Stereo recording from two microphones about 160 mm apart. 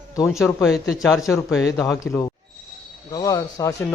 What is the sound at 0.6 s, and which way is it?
Speech, centre (ahead or behind).